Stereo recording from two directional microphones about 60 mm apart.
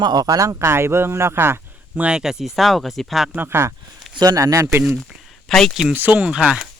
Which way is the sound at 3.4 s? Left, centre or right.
Right.